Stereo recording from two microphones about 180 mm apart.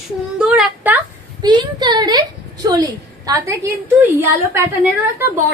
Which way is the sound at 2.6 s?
20° right (ahead or behind).